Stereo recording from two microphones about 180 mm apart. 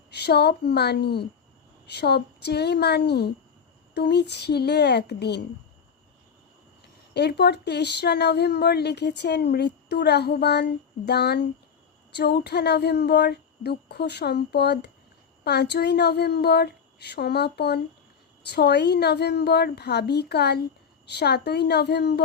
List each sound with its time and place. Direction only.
0.1 s speech: 65° left (ahead or behind)
7.1 s speech: 65° left (ahead or behind)